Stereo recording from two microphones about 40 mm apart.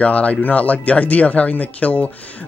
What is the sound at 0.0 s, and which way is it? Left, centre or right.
Speech, left.